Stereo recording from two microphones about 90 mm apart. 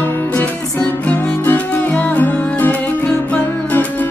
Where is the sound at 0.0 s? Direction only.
20° left (ahead or behind).